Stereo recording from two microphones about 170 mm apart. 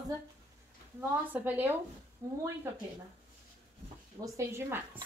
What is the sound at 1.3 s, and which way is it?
A woman's voice, 10° right (ahead or behind).